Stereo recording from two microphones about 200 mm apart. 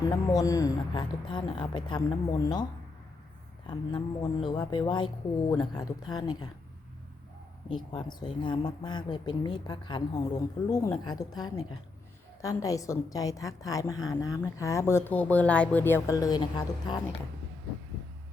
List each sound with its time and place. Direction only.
0.0 s speech: 20° left (ahead or behind)
3.7 s speech: 20° left (ahead or behind)
7.7 s speech: 20° left (ahead or behind)